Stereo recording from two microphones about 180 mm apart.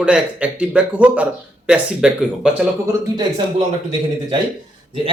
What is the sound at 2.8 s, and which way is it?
Speech, 20° right (ahead or behind).